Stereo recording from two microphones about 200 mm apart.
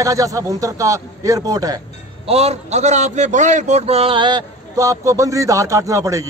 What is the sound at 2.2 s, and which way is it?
A man's voice, 30° right (ahead or behind).